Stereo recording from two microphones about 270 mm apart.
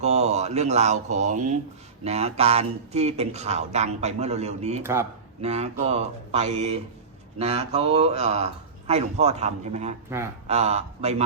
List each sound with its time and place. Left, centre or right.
0.0 s speech: right
4.8 s a man's voice: centre
5.4 s speech: right
10.1 s a man's voice: centre
10.4 s speech: right